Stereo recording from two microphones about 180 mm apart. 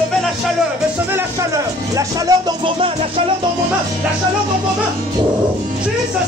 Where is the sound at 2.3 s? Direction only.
25° right (ahead or behind).